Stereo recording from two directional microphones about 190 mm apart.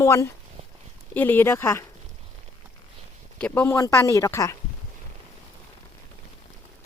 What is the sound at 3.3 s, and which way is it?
Speech, 5° left (ahead or behind).